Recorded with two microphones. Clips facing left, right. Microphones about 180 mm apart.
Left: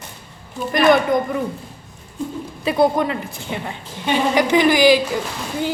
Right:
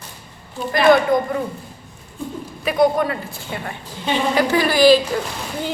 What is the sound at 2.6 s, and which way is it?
A woman's voice, 25° left (ahead or behind).